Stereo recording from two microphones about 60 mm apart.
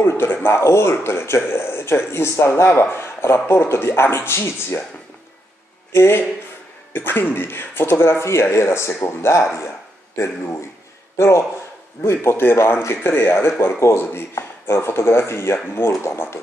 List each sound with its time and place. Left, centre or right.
0.0 s speech: left
5.9 s a man's voice: left